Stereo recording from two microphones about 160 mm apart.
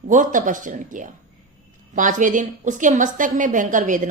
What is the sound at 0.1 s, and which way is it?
A woman's voice, 55° right (ahead or behind).